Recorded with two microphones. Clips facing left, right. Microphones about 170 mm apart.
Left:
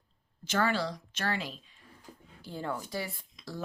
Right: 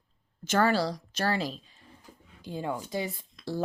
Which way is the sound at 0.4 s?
45° right (ahead or behind).